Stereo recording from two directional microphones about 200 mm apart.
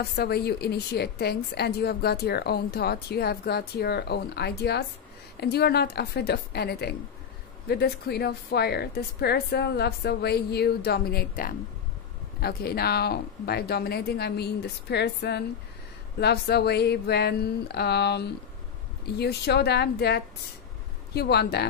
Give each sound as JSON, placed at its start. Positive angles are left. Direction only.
{"t": 0.0, "sound": "a woman's voice", "side_deg": 50}